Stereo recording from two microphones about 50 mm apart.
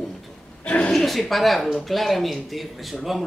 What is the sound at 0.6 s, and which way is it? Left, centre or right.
Speech, left.